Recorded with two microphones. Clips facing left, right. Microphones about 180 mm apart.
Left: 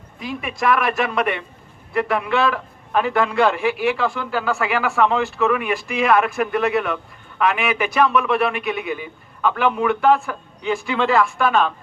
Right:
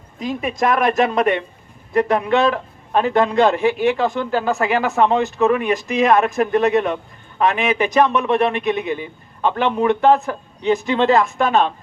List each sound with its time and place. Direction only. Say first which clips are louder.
0.2 s speech: right 5 dB; 40° right (ahead or behind)
9.4 s speech: right 1 dB; 30° right (ahead or behind)